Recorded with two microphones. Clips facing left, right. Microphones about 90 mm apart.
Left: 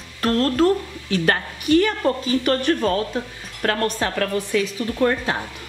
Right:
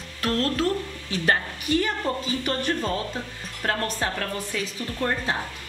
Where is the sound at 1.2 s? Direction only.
85° left.